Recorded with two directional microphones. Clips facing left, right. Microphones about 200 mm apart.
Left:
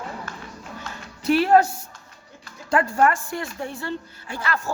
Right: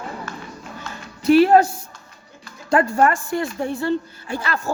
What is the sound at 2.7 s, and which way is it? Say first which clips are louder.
A woman's voice: right 3 dB; 35° right (ahead or behind).